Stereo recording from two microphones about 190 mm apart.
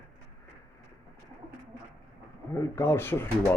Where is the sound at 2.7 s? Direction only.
15° left (ahead or behind).